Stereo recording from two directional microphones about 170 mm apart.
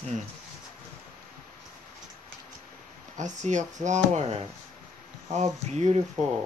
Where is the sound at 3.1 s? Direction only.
45° right (ahead or behind).